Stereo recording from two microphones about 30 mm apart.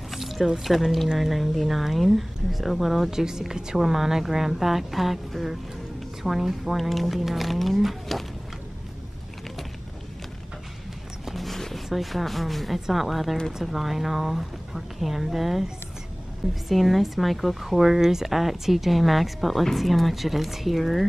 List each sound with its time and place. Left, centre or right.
0.1 s a sound: centre
0.7 s speech: centre
3.1 s a woman's voice: centre
11.3 s a sound: centre
11.7 s speech: centre
16.6 s speech: centre